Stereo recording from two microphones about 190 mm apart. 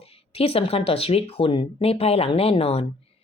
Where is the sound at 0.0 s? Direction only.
30° left (ahead or behind).